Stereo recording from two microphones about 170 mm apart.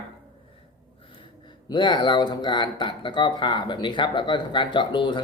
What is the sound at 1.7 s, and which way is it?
Speech, 25° left (ahead or behind).